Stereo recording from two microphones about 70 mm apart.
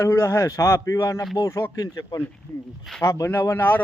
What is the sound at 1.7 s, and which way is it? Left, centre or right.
Speech, left.